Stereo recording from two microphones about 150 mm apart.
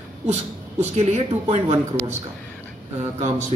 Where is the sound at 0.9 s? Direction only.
45° right (ahead or behind).